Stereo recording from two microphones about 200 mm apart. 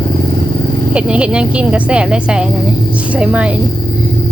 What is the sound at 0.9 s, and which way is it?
A woman's voice, 5° right (ahead or behind).